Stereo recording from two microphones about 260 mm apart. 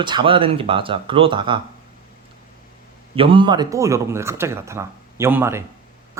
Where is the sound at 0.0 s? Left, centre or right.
Centre.